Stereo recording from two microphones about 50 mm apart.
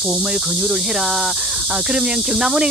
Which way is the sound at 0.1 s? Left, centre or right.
Centre.